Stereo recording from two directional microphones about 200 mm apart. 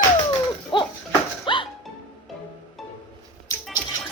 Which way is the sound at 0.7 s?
25° left (ahead or behind).